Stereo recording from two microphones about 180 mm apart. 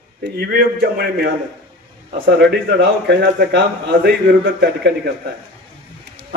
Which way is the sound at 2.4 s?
75° right (ahead or behind).